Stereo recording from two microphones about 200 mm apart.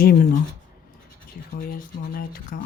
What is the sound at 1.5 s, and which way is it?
Speech, 45° left (ahead or behind).